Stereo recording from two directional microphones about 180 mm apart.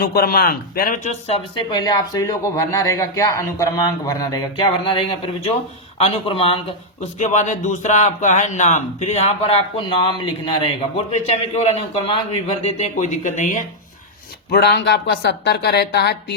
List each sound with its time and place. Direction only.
0.0 s a man's voice: 55° left (ahead or behind)
1.3 s a man's voice: 25° left (ahead or behind); by 13.6 s 45° left (ahead or behind)
14.5 s speech: 65° left (ahead or behind)